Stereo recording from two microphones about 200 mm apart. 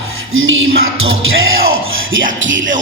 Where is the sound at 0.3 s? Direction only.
80° right.